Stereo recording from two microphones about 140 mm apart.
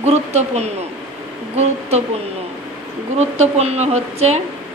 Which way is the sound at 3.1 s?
50° right (ahead or behind).